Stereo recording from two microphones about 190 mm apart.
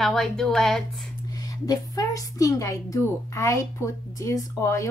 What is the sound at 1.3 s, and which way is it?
A woman's voice, 20° left (ahead or behind).